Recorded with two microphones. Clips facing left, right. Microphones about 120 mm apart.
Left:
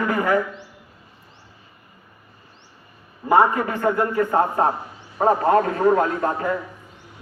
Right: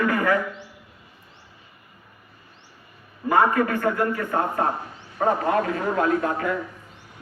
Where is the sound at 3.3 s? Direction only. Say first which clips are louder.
Left 2 dB; 20° left (ahead or behind).